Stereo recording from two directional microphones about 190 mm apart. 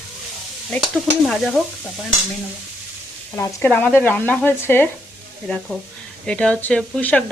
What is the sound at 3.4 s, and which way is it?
Speech, 10° left (ahead or behind).